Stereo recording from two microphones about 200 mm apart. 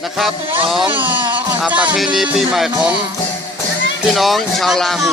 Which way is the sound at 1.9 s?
Centre (ahead or behind).